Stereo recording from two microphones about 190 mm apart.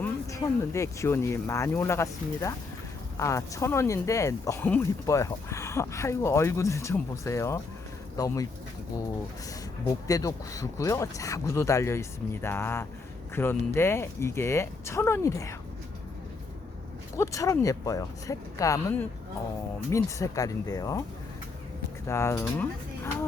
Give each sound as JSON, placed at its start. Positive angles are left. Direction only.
{"t": 0.0, "sound": "speech", "side_deg": 15}
{"t": 9.8, "sound": "speech", "side_deg": 20}
{"t": 17.2, "sound": "speech", "side_deg": 15}
{"t": 22.0, "sound": "speech", "side_deg": 15}